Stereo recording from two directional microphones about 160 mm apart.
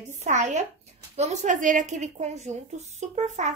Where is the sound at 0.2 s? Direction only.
50° right (ahead or behind).